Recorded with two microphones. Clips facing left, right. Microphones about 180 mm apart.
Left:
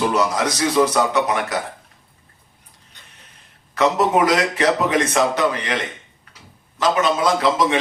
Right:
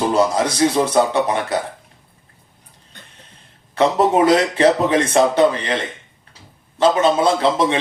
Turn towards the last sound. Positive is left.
turn(degrees=-30)  # may be behind; listen again after turning